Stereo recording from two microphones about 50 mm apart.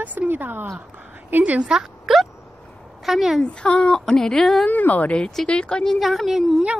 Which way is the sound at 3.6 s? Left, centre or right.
Left.